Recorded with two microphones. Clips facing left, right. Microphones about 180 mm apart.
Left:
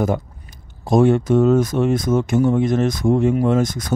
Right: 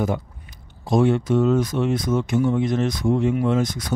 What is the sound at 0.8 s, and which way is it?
Speech, 45° left (ahead or behind).